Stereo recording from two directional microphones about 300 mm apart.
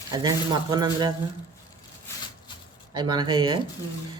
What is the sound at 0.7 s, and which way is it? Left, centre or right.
Speech, centre.